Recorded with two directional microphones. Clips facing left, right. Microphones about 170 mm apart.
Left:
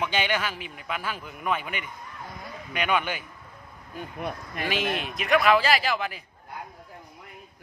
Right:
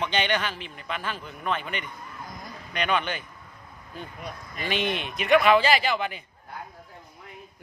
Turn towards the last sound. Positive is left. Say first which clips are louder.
# right 1 dB
turn(degrees=0)  # may be behind; listen again after turning